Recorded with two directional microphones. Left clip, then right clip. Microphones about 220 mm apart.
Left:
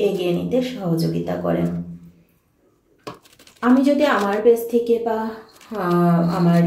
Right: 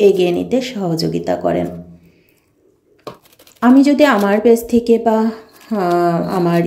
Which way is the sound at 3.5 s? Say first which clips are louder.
Right 6 dB; 45° right (ahead or behind).